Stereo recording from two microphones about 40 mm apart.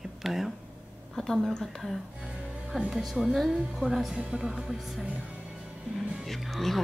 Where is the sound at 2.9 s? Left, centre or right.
Centre.